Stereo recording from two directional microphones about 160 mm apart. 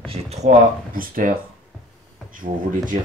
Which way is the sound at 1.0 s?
60° right (ahead or behind).